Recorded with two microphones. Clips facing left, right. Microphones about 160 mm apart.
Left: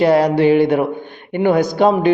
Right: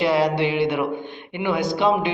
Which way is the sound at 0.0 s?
45° left (ahead or behind).